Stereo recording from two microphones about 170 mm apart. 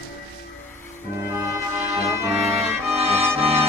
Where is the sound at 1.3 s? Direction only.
15° right (ahead or behind).